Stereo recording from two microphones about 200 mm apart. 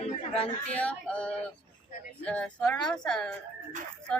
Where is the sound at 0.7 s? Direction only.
5° left (ahead or behind).